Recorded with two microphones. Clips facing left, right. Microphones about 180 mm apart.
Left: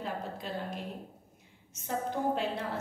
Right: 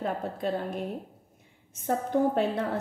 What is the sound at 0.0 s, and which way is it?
A woman's voice, 55° right (ahead or behind).